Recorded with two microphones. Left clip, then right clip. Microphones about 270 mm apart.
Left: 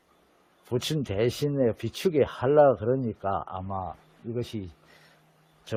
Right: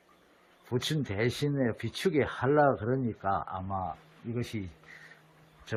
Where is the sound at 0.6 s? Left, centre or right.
Left.